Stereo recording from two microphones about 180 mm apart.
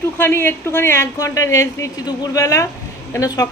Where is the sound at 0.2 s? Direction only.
10° left (ahead or behind).